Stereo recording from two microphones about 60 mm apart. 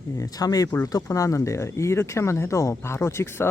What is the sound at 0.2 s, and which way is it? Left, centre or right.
Speech, left.